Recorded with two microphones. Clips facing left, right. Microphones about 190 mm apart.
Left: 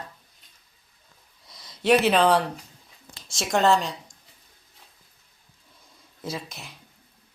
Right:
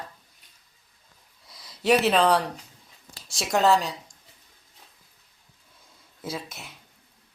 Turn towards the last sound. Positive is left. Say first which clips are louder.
# even
turn(degrees=-5)  # may be behind; listen again after turning